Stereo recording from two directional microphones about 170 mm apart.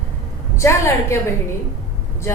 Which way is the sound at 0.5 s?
15° left (ahead or behind).